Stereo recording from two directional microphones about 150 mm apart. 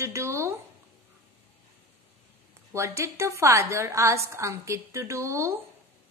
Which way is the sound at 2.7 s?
20° right (ahead or behind).